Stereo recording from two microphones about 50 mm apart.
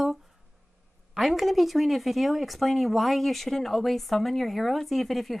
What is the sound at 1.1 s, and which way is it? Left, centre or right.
Speech, centre.